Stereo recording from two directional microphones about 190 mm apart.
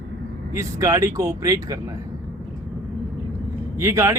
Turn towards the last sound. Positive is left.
turn(degrees=-15)  # may be behind; listen again after turning